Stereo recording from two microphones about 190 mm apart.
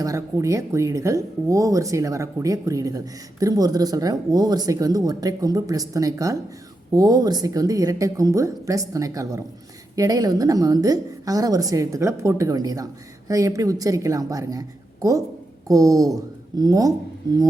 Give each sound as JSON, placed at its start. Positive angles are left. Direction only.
{"t": 0.0, "sound": "a woman's voice", "side_deg": -15}